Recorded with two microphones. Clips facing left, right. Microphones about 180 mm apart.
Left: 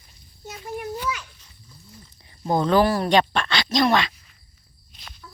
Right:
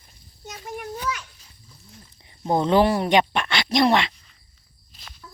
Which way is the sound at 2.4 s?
25° right (ahead or behind).